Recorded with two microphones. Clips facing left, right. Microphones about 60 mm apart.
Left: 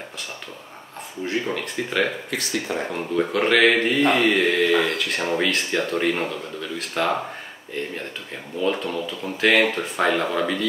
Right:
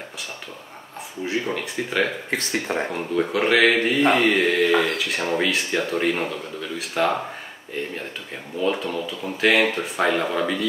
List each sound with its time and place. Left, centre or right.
1.2 s speech: centre
2.3 s speech: right
2.9 s speech: centre